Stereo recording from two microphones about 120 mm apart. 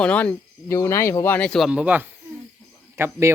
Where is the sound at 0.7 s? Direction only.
25° left (ahead or behind).